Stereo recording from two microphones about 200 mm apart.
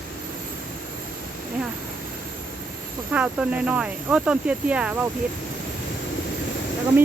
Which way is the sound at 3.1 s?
5° right (ahead or behind).